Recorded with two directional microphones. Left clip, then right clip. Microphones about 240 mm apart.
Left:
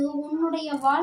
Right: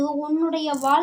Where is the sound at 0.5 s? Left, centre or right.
Right.